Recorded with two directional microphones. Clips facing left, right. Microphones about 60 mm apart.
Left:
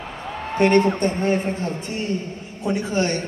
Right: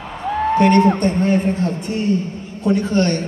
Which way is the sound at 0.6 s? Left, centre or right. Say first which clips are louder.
Right 2 dB; left.